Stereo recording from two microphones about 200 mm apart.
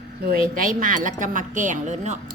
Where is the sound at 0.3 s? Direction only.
45° right (ahead or behind).